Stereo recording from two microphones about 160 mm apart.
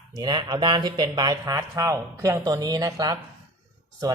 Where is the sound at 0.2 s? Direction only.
30° right (ahead or behind).